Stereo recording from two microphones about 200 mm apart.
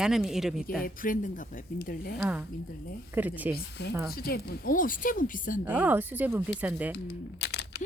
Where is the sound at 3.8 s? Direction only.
55° left (ahead or behind); by 5.6 s 40° left (ahead or behind).